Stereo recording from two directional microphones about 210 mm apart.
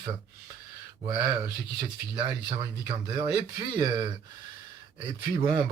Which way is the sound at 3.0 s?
20° right (ahead or behind).